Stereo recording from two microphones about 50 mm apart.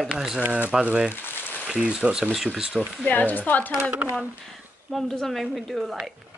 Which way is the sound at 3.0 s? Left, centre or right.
Left.